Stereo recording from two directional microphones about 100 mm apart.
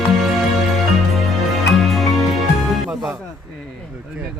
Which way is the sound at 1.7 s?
Centre (ahead or behind).